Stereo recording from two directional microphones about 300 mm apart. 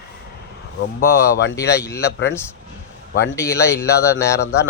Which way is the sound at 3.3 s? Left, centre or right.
Centre.